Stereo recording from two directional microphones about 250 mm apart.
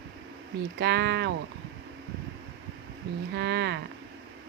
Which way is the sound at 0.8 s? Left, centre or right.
Right.